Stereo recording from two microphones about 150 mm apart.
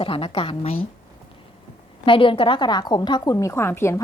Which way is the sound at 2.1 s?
35° left (ahead or behind).